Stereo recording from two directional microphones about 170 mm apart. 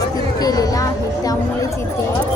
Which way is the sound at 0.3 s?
20° left (ahead or behind).